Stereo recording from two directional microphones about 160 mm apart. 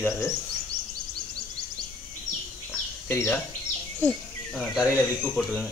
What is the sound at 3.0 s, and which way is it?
Speech, 15° left (ahead or behind).